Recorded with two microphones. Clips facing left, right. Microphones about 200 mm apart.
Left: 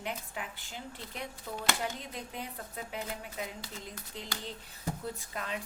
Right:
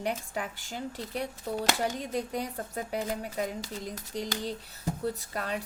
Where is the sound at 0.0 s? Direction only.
45° right (ahead or behind).